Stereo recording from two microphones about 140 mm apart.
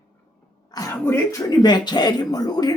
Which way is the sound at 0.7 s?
25° left (ahead or behind).